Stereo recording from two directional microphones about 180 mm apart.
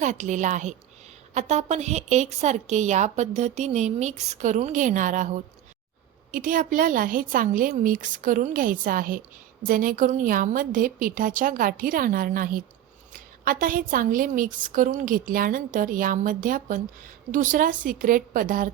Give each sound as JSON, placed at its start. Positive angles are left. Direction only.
{"t": 0.0, "sound": "a woman's voice", "side_deg": -40}